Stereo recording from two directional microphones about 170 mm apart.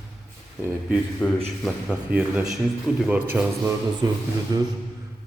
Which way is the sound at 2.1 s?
10° right (ahead or behind).